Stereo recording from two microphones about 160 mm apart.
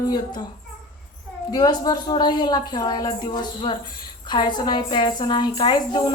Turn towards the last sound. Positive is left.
turn(degrees=25)  # may be behind; listen again after turning